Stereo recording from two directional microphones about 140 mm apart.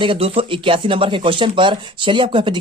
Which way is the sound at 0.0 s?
40° right (ahead or behind).